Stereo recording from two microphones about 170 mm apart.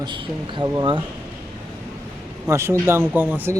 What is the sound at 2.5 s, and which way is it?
Speech, 15° right (ahead or behind).